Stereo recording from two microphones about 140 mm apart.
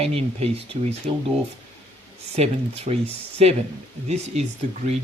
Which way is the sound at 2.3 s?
50° right (ahead or behind).